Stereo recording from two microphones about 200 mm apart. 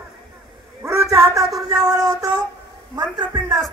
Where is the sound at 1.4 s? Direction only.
Centre (ahead or behind).